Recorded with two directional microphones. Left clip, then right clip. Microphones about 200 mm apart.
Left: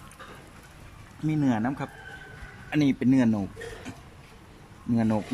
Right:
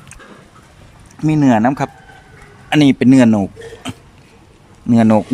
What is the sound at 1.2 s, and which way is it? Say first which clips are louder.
A man's voice: right 14 dB; 50° right (ahead or behind).